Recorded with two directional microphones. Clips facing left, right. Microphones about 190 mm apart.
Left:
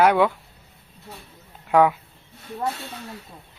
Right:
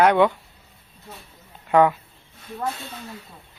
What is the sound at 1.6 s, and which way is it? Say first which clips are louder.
Speech: right 1 dB; 5° left (ahead or behind).